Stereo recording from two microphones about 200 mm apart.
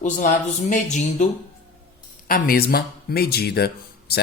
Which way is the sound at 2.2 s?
45° left (ahead or behind).